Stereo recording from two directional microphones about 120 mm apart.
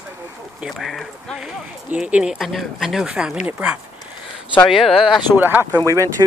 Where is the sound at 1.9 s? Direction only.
10° right (ahead or behind).